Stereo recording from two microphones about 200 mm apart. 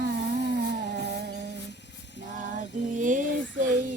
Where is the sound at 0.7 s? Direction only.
55° right (ahead or behind).